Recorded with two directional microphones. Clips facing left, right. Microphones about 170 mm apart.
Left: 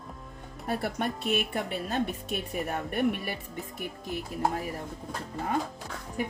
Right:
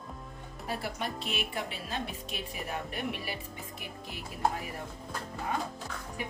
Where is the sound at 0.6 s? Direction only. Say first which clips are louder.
Left 5 dB; 55° left (ahead or behind).